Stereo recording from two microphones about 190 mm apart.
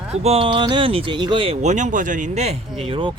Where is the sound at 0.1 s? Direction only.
30° right (ahead or behind).